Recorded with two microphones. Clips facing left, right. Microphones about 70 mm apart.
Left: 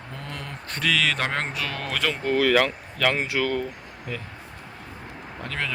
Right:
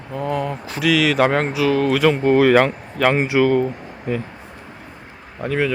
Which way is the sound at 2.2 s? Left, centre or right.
Right.